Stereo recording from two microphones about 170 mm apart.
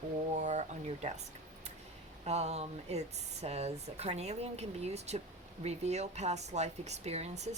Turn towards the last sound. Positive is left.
turn(degrees=-40)  # may be behind; listen again after turning